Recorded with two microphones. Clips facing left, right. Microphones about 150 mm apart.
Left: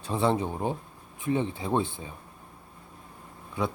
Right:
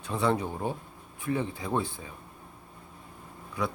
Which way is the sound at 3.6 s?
25° left (ahead or behind).